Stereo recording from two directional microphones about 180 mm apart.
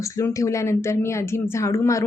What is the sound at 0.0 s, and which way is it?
A woman's voice, 15° left (ahead or behind).